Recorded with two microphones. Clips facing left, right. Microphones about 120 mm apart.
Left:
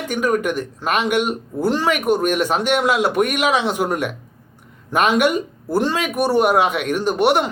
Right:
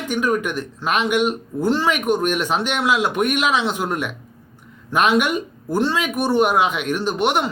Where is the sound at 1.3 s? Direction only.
10° left (ahead or behind).